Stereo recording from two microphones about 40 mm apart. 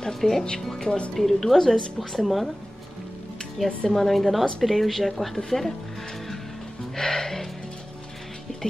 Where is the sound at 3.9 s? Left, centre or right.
Centre.